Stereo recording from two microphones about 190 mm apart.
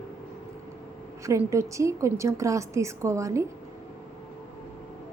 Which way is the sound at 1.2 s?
15° right (ahead or behind).